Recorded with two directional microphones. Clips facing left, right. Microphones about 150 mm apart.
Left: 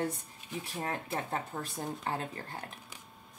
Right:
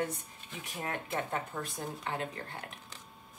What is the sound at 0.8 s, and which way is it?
Speech, 35° left (ahead or behind).